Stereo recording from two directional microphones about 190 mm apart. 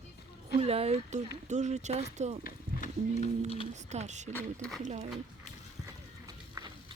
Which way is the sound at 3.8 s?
35° right (ahead or behind).